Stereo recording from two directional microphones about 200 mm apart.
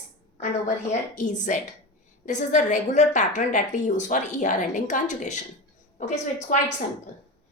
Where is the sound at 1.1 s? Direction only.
40° left (ahead or behind).